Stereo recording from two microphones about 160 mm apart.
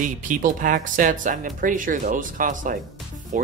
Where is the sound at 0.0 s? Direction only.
55° right (ahead or behind).